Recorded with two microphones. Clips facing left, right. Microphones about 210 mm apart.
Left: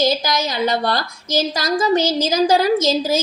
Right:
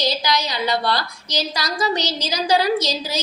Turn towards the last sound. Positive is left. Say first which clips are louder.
# left 5 dB
turn(degrees=45)  # may be behind; listen again after turning